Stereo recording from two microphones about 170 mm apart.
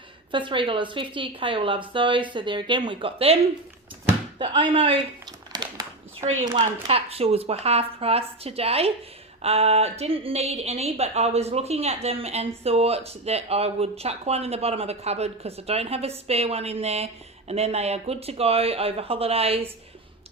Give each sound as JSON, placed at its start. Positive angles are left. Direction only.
{"t": 0.3, "sound": "a woman's voice", "side_deg": -30}
{"t": 4.5, "sound": "speech", "side_deg": -30}
{"t": 5.5, "sound": "a sound", "side_deg": -25}
{"t": 6.4, "sound": "speech", "side_deg": -30}